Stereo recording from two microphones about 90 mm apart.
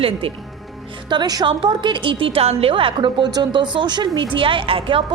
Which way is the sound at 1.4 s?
65° right (ahead or behind).